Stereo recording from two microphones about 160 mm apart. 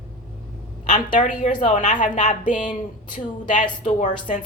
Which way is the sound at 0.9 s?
50° left (ahead or behind).